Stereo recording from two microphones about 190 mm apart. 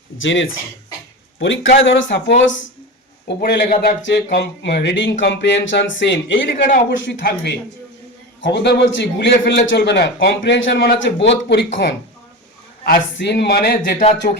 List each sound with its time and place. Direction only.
0.2 s speech: 85° left
3.2 s speech: 60° left (ahead or behind)
7.0 s speech: 65° left (ahead or behind)
8.5 s speech: 65° left (ahead or behind)